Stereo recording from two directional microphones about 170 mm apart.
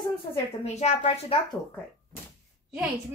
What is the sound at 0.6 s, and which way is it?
Speech, 40° left (ahead or behind).